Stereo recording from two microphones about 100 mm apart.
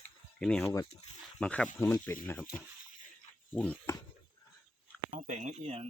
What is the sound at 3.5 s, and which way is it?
Speech, 15° left (ahead or behind).